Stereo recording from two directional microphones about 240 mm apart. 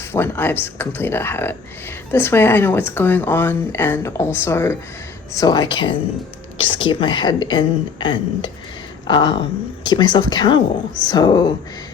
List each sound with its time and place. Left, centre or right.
0.1 s a woman's voice: centre
6.8 s a woman's voice: centre